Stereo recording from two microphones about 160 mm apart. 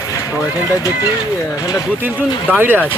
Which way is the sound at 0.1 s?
20° left (ahead or behind).